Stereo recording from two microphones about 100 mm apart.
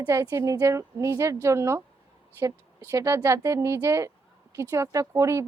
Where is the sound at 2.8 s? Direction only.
30° right (ahead or behind).